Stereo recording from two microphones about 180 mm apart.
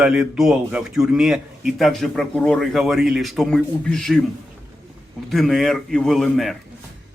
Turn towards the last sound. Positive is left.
turn(degrees=0)  # may be behind; listen again after turning